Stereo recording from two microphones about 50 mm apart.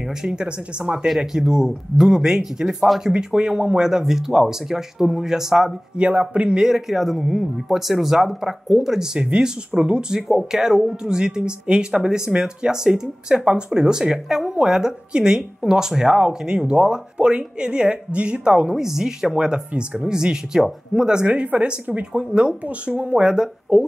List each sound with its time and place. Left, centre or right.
0.2 s speech: centre
1.0 s speech: centre
5.9 s speech: right
10.2 s speech: centre; by 22.0 s right
22.1 s speech: centre
22.7 s speech: right